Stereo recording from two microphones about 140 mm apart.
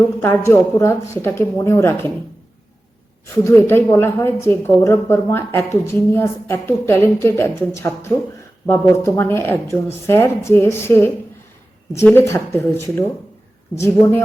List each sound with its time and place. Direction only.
0.2 s a woman's voice: 20° left (ahead or behind)
3.4 s a woman's voice: 15° left (ahead or behind)
12.1 s a woman's voice: 15° left (ahead or behind)